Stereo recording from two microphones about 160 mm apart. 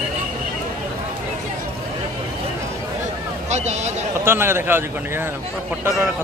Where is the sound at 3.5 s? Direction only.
45° right (ahead or behind).